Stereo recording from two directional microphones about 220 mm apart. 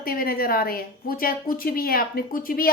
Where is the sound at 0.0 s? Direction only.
40° left (ahead or behind).